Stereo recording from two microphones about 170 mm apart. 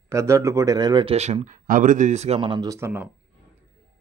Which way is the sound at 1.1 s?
40° right (ahead or behind).